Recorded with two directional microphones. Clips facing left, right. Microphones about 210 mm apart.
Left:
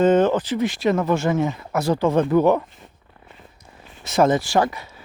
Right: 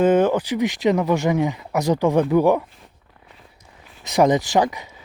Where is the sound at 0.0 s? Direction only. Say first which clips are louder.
Even; 10° right (ahead or behind).